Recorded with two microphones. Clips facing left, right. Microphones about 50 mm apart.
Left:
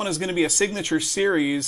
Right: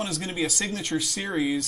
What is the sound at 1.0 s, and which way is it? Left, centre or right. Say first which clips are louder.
Speech: left 9 dB; centre.